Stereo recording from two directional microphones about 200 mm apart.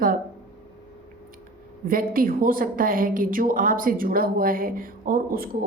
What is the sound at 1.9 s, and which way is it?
A woman's voice, 45° right (ahead or behind).